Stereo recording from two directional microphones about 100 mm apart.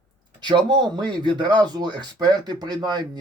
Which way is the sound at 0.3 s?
50° right (ahead or behind).